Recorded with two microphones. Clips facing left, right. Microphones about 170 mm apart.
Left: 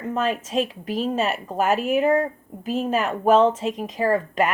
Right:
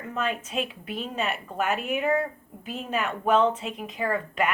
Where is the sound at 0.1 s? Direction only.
40° left (ahead or behind).